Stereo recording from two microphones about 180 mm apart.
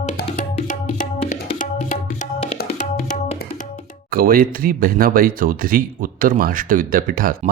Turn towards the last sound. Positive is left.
turn(degrees=-50)  # may be behind; listen again after turning